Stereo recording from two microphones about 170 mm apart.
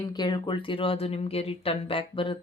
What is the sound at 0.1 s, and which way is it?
Speech, 25° left (ahead or behind).